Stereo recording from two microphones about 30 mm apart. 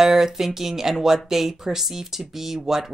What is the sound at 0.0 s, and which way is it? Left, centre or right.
Speech, centre.